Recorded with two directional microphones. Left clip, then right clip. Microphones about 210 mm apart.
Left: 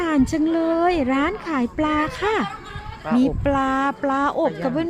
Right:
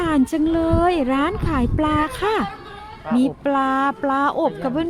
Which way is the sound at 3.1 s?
45° left (ahead or behind).